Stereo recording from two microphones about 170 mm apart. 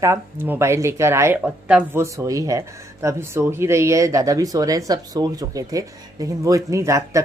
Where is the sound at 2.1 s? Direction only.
20° right (ahead or behind).